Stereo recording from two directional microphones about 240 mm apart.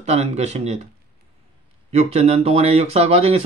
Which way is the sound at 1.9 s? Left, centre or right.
Right.